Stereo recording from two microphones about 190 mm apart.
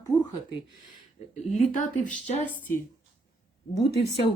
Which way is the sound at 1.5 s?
40° left (ahead or behind).